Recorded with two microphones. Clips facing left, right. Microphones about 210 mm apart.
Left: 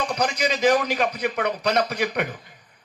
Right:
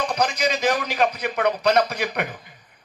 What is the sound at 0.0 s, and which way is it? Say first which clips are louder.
A man's voice: right 1 dB; 55° right (ahead or behind).